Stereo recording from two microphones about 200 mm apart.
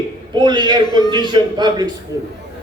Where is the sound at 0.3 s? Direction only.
20° right (ahead or behind).